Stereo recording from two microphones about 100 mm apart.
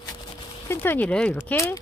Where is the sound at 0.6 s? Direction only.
20° left (ahead or behind).